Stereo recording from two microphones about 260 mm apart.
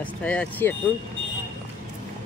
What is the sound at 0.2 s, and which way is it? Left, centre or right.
Speech, centre.